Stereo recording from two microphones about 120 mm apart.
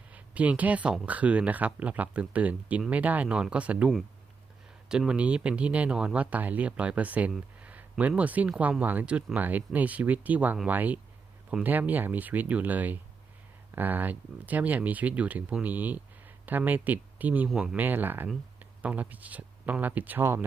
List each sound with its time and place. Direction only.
0.1 s speech: 10° right (ahead or behind)